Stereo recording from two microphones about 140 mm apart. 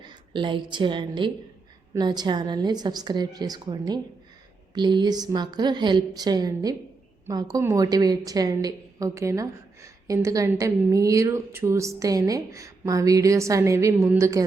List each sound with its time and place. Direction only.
0.0 s a woman's voice: 35° right (ahead or behind)